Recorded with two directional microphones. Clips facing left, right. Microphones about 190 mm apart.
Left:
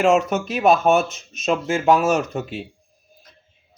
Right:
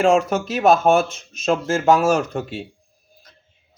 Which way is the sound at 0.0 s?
5° left (ahead or behind).